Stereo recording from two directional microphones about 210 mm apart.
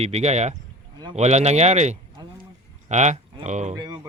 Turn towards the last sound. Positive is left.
turn(degrees=-35)  # may be behind; listen again after turning